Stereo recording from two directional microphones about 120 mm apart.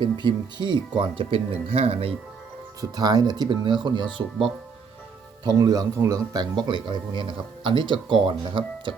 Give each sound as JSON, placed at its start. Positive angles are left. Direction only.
{"t": 0.0, "sound": "speech", "side_deg": -40}
{"t": 2.9, "sound": "speech", "side_deg": -35}
{"t": 5.5, "sound": "speech", "side_deg": -30}